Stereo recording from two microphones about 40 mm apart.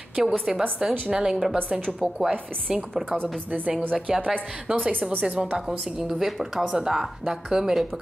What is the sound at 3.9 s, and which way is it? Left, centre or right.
Speech, right.